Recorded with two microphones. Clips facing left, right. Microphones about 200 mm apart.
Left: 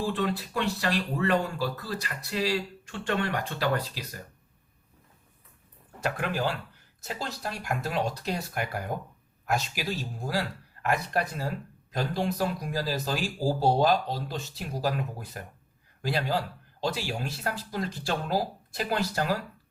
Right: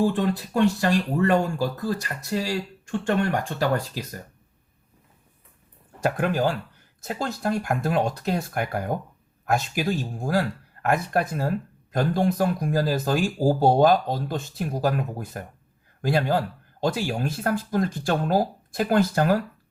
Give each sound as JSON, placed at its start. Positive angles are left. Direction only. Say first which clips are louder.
{"t": 0.0, "sound": "speech", "louder": "right 6 dB", "side_deg": -45}
{"t": 6.0, "sound": "a man's voice", "louder": "right 6 dB", "side_deg": -50}